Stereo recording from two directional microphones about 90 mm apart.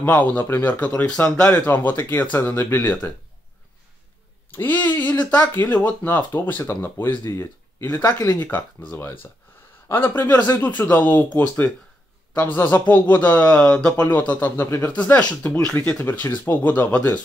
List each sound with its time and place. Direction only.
0.2 s speech: 20° left (ahead or behind)
4.5 s speech: 20° left (ahead or behind)
7.9 s speech: 45° left (ahead or behind)
8.3 s speech: 20° left (ahead or behind)
9.8 s speech: 25° left (ahead or behind)